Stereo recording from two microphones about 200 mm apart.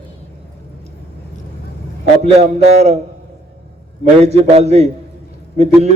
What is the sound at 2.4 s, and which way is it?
Speech, 30° right (ahead or behind).